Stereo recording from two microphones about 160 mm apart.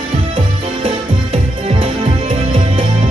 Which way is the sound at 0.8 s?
35° right (ahead or behind).